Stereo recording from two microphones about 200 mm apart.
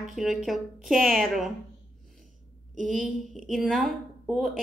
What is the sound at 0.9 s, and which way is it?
Speech, 45° right (ahead or behind).